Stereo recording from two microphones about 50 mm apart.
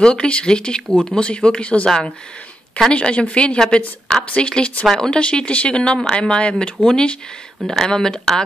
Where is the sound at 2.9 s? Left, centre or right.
Left.